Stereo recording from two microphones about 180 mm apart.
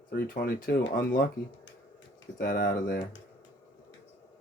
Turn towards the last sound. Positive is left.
turn(degrees=50)  # may be behind; listen again after turning